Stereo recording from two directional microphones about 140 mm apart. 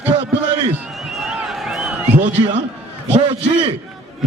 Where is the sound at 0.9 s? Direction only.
Centre (ahead or behind).